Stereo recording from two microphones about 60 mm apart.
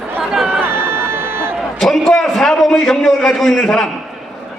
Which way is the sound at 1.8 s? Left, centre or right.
Centre.